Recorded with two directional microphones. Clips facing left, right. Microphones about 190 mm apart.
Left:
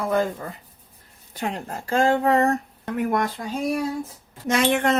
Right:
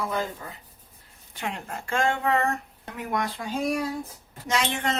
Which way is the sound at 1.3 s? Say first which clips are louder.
Left 4 dB; 40° left (ahead or behind).